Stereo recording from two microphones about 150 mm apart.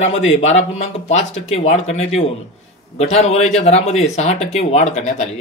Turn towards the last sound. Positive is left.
turn(degrees=50)  # may be behind; listen again after turning